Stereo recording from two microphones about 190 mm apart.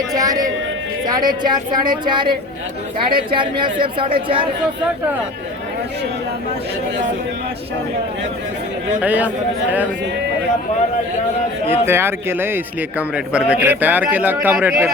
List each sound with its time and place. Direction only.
0.1 s a sound: 20° right (ahead or behind)
1.0 s a woman's voice: 20° right (ahead or behind)
3.3 s a woman's voice: 25° right (ahead or behind)
9.0 s a man's voice: 10° right (ahead or behind)
11.7 s a man's voice: 10° right (ahead or behind)